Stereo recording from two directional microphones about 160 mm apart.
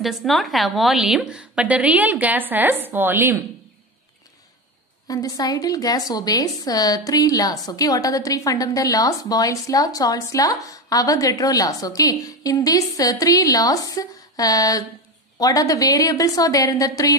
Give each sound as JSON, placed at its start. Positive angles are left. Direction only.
{"t": 0.0, "sound": "a woman's voice", "side_deg": 0}
{"t": 5.0, "sound": "a woman's voice", "side_deg": 20}